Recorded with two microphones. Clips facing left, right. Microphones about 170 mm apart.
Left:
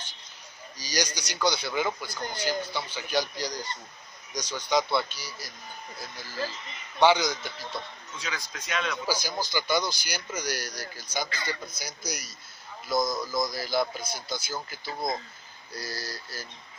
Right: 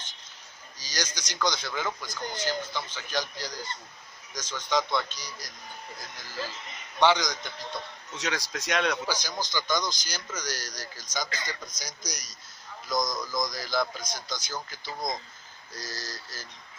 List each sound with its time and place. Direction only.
0.7 s speech: 10° left (ahead or behind)
7.0 s speech: 10° left (ahead or behind)
8.2 s speech: 75° right (ahead or behind)
9.0 s speech: 10° left (ahead or behind)